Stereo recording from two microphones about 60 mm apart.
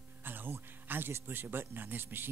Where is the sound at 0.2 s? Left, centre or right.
Right.